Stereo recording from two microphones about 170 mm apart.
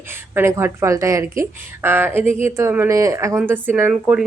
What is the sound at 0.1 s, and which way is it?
Speech, 15° right (ahead or behind).